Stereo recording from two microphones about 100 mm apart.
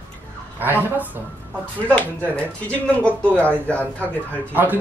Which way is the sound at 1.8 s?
15° left (ahead or behind).